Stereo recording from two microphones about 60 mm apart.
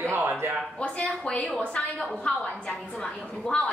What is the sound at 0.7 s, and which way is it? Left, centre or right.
A woman's voice, centre.